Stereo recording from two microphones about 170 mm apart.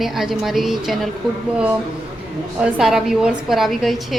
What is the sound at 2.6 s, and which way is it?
Speech, centre (ahead or behind).